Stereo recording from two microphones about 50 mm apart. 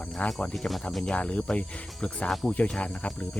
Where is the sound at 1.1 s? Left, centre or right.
Left.